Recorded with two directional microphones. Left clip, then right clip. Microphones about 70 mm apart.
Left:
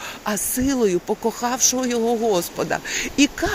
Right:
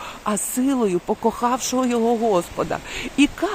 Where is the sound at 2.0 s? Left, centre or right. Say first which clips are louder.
Even; right.